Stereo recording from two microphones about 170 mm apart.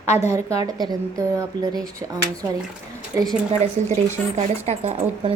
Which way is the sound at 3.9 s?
40° right (ahead or behind).